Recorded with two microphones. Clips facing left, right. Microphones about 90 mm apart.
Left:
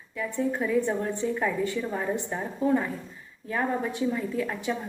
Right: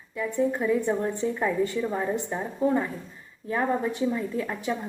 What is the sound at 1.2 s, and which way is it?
Speech, 35° right (ahead or behind).